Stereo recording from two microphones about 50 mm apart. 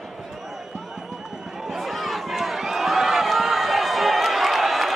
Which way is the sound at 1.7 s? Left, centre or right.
Centre.